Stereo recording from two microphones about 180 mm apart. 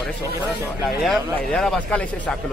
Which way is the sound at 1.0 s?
Centre (ahead or behind).